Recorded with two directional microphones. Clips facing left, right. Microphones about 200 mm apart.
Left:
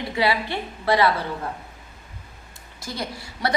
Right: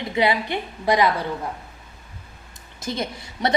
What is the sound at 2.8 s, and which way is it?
Speech, 20° right (ahead or behind).